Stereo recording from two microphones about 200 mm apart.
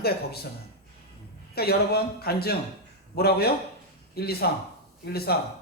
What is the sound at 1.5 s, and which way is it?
Speech, 50° left (ahead or behind).